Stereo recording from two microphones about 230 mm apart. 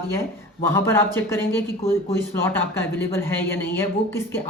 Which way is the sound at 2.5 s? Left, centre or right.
Centre.